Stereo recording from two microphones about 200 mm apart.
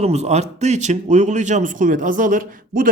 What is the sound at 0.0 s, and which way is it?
Speech, 30° right (ahead or behind).